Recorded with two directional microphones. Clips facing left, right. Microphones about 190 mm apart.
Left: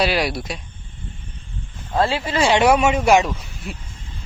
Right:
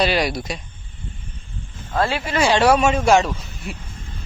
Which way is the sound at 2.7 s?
10° left (ahead or behind).